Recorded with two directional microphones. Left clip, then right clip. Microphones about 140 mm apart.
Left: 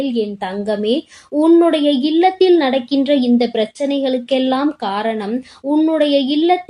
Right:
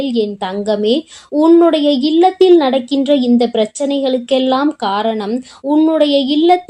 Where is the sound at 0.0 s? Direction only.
35° right (ahead or behind).